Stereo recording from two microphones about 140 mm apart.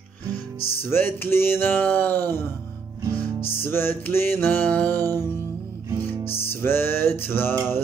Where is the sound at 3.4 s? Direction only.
15° left (ahead or behind).